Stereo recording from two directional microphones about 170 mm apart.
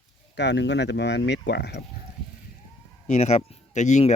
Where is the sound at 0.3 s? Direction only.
90° left.